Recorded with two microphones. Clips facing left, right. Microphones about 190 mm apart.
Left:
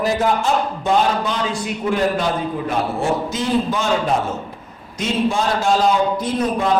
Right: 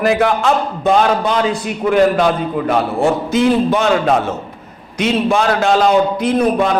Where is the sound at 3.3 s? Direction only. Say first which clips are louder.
Right 7 dB; 65° right (ahead or behind).